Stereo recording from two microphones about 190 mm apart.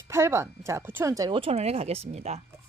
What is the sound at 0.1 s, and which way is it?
Speech, 15° right (ahead or behind).